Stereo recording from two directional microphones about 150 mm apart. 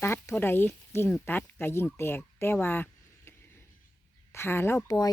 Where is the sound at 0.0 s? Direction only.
15° left (ahead or behind).